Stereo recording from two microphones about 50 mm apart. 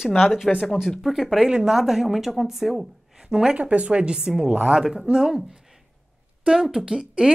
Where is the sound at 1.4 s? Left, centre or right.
Centre.